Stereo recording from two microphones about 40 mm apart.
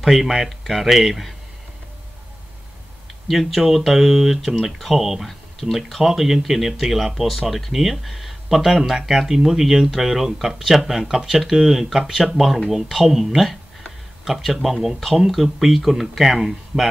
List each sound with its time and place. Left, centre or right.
0.0 s speech: centre
3.3 s speech: centre
5.6 s speech: right
6.0 s speech: centre